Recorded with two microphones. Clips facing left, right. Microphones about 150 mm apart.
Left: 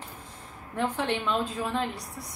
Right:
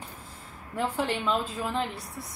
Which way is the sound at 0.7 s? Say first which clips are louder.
Even; 5° right (ahead or behind).